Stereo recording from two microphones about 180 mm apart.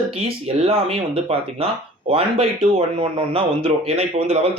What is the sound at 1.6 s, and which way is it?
Speech, 30° right (ahead or behind).